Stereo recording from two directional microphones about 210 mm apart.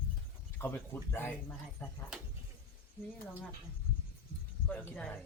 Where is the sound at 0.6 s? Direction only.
10° left (ahead or behind).